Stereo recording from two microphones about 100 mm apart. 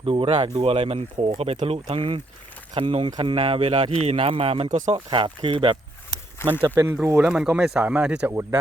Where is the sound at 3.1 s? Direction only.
45° right (ahead or behind).